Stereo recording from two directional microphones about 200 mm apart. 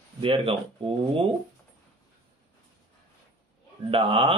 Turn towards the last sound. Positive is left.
turn(degrees=-25)  # may be behind; listen again after turning